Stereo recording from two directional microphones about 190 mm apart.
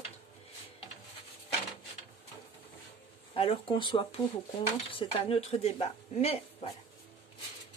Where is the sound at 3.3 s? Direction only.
30° left (ahead or behind).